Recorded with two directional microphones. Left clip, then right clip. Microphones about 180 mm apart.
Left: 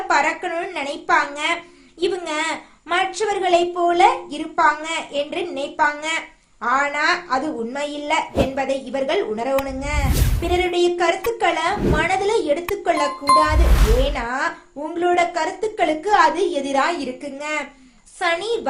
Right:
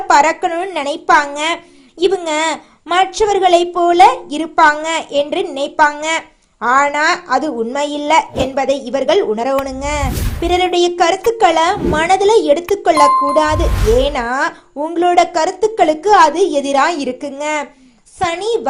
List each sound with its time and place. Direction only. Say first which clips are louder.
0.1 s a woman's voice: right 8 dB; 40° right (ahead or behind)
13.7 s a woman's voice: right 8 dB; centre (ahead or behind)
14.0 s a woman's voice: right 6 dB; 40° right (ahead or behind)